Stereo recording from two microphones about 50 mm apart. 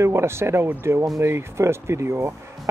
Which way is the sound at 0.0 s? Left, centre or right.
Right.